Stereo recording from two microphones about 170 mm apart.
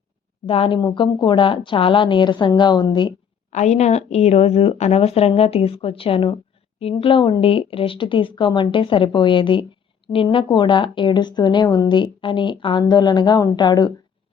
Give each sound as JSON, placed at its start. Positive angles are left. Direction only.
{"t": 0.4, "sound": "a woman's voice", "side_deg": 35}
{"t": 3.5, "sound": "a woman's voice", "side_deg": 40}